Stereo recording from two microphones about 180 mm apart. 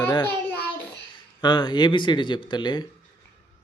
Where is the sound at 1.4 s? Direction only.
25° left (ahead or behind).